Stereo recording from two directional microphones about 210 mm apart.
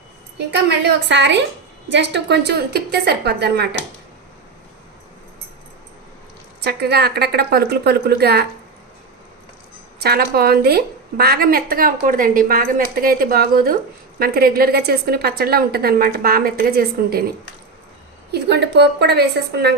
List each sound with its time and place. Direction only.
0.3 s a woman's voice: 55° right (ahead or behind)
6.6 s a woman's voice: 50° right (ahead or behind)
10.0 s a woman's voice: 50° right (ahead or behind)